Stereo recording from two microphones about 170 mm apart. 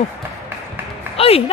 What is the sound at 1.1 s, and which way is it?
Music, 35° left (ahead or behind).